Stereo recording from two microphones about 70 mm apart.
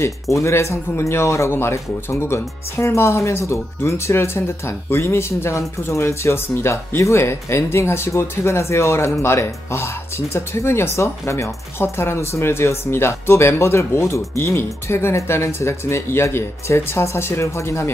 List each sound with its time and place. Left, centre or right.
0.0 s speech: left